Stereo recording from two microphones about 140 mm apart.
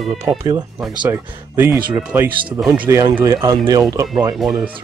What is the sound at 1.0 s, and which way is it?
Speech, 15° right (ahead or behind).